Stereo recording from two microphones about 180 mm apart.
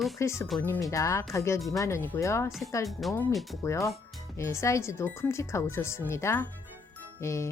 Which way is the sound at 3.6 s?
15° left (ahead or behind).